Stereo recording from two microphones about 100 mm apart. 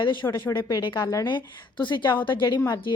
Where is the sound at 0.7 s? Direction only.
50° left (ahead or behind).